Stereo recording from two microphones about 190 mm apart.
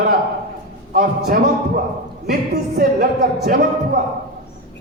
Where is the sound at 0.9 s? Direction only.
50° right (ahead or behind).